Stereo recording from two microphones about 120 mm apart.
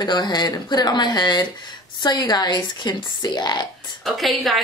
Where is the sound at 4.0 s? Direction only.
Centre (ahead or behind).